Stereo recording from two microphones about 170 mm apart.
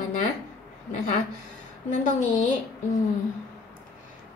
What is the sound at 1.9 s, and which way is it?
Speech, 45° left (ahead or behind).